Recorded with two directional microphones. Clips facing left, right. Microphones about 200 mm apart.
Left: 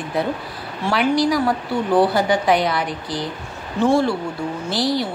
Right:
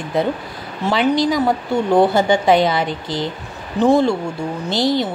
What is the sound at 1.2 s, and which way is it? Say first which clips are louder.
Speech: right 2 dB; 20° right (ahead or behind).